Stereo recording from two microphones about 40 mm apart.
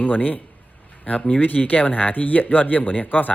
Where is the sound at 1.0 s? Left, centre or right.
Left.